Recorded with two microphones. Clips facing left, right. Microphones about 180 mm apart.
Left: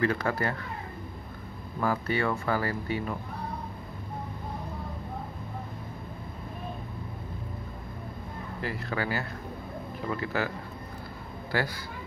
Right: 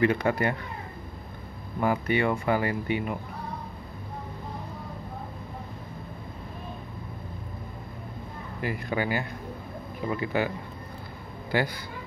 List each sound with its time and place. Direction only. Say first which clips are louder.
0.0 s speech: right 4 dB; 20° right (ahead or behind)
1.8 s speech: right 3 dB; 15° right (ahead or behind)
8.5 s speech: right 3 dB; 15° right (ahead or behind)